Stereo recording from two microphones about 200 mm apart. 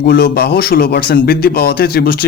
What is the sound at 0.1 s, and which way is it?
A man's voice, 50° left (ahead or behind).